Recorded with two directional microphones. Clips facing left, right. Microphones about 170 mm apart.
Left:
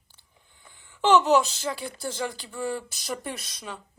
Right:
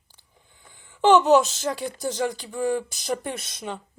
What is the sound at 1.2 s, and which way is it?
Speech, 45° right (ahead or behind).